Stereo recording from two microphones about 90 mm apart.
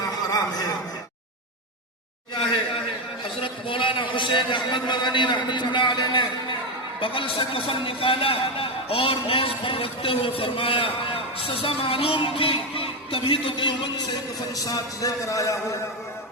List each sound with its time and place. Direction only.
0.0 s a sound: 40° left (ahead or behind)
3.4 s a man's voice: 70° left (ahead or behind)
7.0 s a man's voice: 80° left; by 13.9 s 60° left (ahead or behind)
14.5 s speech: 40° left (ahead or behind)